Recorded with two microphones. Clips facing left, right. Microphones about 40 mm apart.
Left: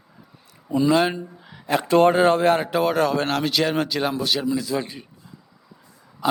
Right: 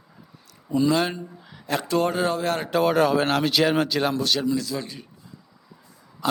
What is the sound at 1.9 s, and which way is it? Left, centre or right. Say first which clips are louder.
Speech: left 8 dB; left.